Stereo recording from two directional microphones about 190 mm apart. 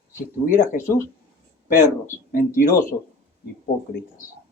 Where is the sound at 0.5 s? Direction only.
45° left (ahead or behind).